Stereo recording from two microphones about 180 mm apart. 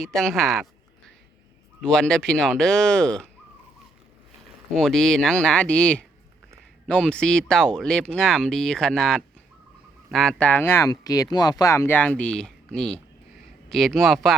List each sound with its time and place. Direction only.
0.0 s speech: centre (ahead or behind)
4.7 s speech: 5° left (ahead or behind)